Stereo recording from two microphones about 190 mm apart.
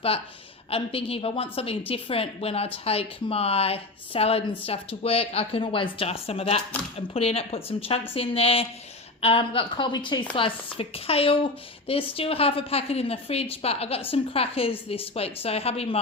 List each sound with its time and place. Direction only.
0.7 s a woman's voice: 30° left (ahead or behind)